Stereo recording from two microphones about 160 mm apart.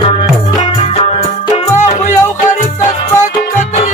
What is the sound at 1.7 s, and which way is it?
Music, 50° left (ahead or behind).